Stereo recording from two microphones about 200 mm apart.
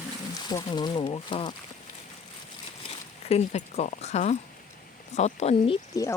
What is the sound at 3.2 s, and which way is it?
Speech, 30° left (ahead or behind).